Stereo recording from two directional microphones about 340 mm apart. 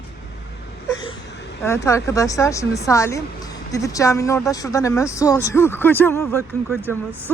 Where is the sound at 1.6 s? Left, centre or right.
Centre.